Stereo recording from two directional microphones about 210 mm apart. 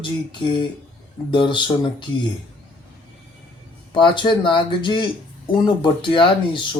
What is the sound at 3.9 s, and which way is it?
Speech, 20° left (ahead or behind).